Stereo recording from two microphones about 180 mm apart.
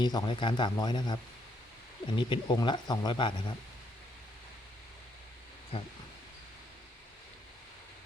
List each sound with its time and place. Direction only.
0.0 s speech: 25° left (ahead or behind)
5.7 s speech: 30° left (ahead or behind)